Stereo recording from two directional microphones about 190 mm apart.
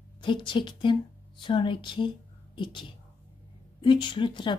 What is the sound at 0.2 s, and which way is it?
A woman's voice, 25° left (ahead or behind).